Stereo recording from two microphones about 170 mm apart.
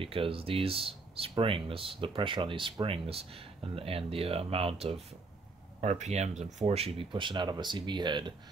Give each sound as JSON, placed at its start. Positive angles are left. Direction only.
{"t": 0.0, "sound": "speech", "side_deg": -30}